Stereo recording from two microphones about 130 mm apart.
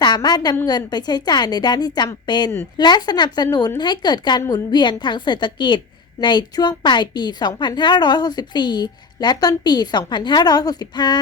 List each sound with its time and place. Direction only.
0.0 s a woman's voice: 35° left (ahead or behind)